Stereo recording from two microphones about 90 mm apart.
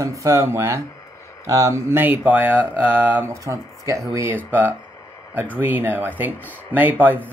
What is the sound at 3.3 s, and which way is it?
Speech, 35° right (ahead or behind).